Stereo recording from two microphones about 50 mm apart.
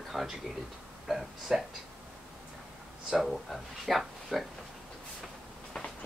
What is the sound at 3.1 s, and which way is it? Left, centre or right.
Speech, centre.